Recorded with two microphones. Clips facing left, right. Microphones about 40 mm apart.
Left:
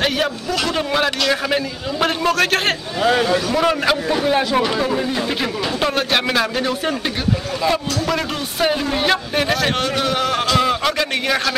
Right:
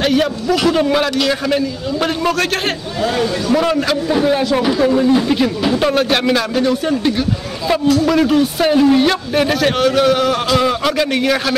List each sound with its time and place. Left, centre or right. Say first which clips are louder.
0.0 s a man's voice: right 4 dB; centre
3.4 s a man's voice: right 2 dB; centre
7.7 s a man's voice: right 7 dB; centre